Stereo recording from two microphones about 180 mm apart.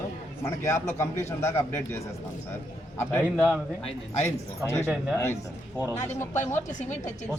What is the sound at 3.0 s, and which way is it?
Speech, 10° left (ahead or behind).